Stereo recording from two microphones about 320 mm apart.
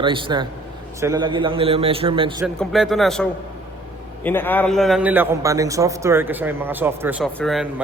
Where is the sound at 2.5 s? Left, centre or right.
Centre.